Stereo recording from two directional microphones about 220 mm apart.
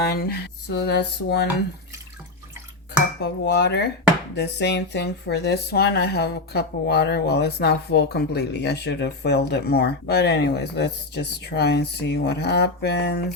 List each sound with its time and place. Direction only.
0.0 s speech: 45° left (ahead or behind)
3.4 s speech: 50° left (ahead or behind)